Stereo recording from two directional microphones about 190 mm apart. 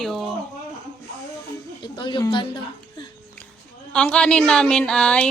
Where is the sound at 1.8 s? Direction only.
25° left (ahead or behind).